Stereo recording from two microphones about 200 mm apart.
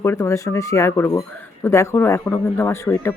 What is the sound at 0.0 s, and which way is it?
Speech, 10° left (ahead or behind).